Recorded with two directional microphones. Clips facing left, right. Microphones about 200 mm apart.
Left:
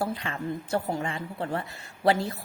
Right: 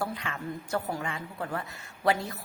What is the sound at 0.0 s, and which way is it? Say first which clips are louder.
A woman's voice: left 3 dB; 30° left (ahead or behind).